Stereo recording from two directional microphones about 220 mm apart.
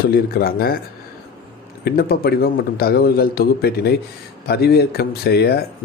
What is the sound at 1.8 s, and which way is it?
Speech, 45° left (ahead or behind).